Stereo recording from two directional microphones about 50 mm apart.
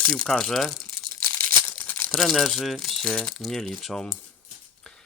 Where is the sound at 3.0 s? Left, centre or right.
Centre.